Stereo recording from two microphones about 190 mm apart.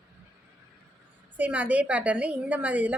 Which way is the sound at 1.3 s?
5° right (ahead or behind).